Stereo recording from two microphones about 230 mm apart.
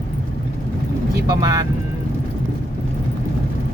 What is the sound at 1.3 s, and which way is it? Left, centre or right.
Speech, centre.